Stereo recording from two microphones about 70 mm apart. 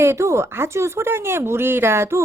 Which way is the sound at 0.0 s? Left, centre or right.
Right.